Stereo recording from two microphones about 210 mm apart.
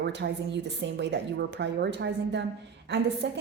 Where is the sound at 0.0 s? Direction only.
55° right (ahead or behind).